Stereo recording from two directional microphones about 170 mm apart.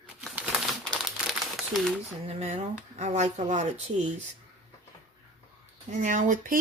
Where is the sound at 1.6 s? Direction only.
Centre (ahead or behind).